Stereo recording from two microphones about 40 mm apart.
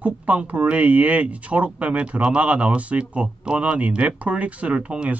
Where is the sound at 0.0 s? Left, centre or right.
Right.